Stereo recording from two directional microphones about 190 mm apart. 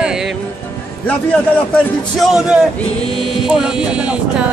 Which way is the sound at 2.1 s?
5° right (ahead or behind).